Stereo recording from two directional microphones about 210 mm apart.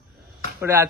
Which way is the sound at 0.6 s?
10° right (ahead or behind).